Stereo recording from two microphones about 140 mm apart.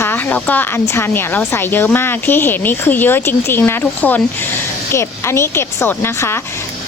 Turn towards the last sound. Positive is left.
turn(degrees=20)  # may be behind; listen again after turning